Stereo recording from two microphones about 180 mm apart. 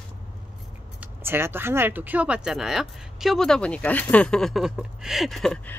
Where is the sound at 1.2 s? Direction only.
10° right (ahead or behind).